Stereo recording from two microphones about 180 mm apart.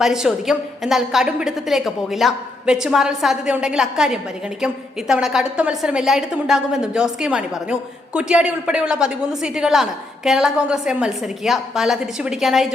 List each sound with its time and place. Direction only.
0.0 s a woman's voice: 5° right (ahead or behind)